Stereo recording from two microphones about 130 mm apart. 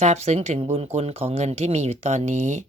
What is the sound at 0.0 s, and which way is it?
Speech, 55° right (ahead or behind).